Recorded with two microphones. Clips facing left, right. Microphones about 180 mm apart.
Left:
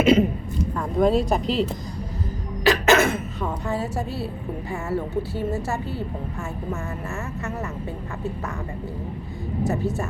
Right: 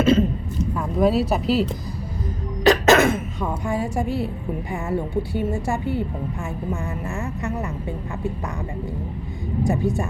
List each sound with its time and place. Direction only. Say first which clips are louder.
0.0 s a sound: even; 15° left (ahead or behind)
0.8 s speech: even; 5° right (ahead or behind)
2.6 s a woman's voice: right 3 dB; 15° right (ahead or behind)
9.6 s a woman's voice: right 3 dB; 15° right (ahead or behind)